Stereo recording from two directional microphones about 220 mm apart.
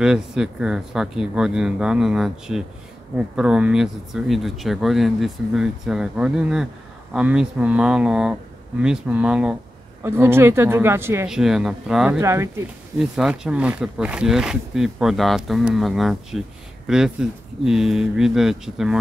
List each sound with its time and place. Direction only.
0.0 s speech: 5° right (ahead or behind)